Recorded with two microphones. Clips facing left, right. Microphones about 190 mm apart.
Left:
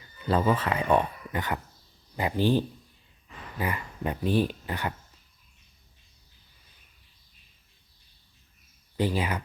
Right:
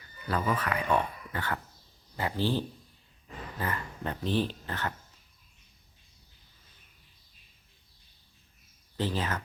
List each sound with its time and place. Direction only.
0.0 s speech: 25° left (ahead or behind)
9.0 s speech: 10° left (ahead or behind)